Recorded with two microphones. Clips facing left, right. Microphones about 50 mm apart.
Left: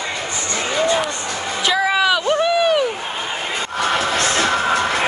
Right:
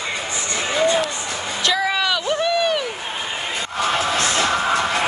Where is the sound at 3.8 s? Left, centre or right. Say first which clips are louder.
Left 1 dB; left.